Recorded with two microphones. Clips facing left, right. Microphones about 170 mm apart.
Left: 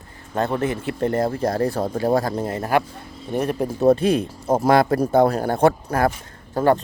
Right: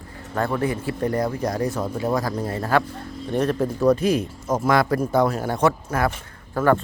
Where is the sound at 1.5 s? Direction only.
55° left (ahead or behind).